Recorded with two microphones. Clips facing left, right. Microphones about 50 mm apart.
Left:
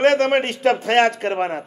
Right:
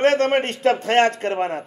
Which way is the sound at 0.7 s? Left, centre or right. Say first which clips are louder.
Left 1 dB; left.